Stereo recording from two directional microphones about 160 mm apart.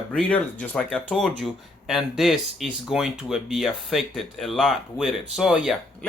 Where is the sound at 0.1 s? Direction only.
5° left (ahead or behind).